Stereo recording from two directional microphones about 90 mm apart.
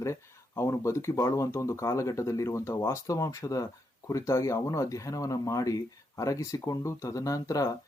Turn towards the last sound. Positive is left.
turn(degrees=40)  # may be behind; listen again after turning